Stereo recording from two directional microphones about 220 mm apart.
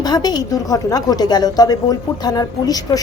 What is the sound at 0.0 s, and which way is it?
A woman's voice, 20° left (ahead or behind).